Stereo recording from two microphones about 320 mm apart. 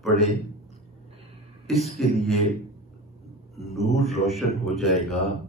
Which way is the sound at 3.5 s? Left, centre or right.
Centre.